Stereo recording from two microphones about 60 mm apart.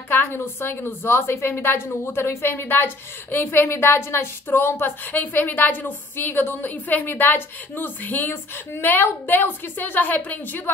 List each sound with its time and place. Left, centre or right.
0.1 s a woman's voice: left